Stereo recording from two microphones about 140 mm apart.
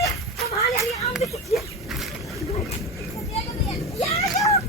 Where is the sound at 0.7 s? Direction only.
20° left (ahead or behind).